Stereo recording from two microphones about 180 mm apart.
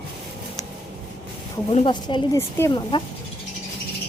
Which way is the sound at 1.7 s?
35° left (ahead or behind).